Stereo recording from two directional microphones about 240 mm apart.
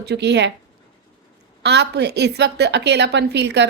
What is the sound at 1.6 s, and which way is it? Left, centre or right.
A woman's voice, right.